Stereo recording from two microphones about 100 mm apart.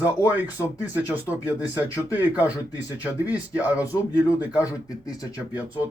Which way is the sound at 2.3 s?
15° right (ahead or behind).